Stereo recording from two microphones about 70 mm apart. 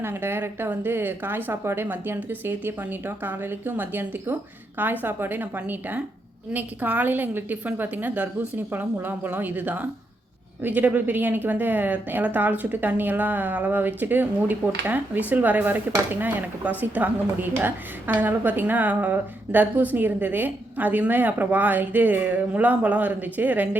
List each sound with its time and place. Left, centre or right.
0.0 s a woman's voice: right